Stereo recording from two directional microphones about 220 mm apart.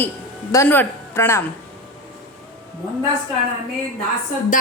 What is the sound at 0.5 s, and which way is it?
Speech, 10° left (ahead or behind).